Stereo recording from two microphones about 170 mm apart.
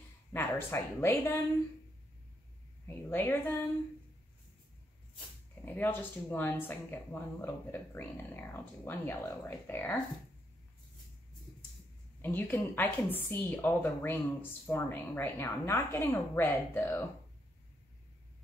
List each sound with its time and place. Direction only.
0.3 s speech: 15° left (ahead or behind)
2.9 s a woman's voice: 15° left (ahead or behind)
5.7 s a woman's voice: 10° left (ahead or behind)
12.2 s a woman's voice: 10° left (ahead or behind)